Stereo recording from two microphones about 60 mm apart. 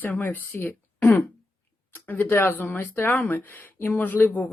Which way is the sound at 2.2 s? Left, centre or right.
Left.